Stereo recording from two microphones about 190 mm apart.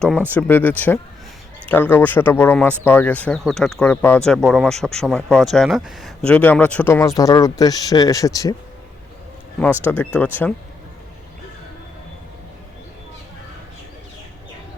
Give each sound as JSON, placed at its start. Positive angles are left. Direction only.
{"t": 0.3, "sound": "speech", "side_deg": 10}
{"t": 9.6, "sound": "speech", "side_deg": 10}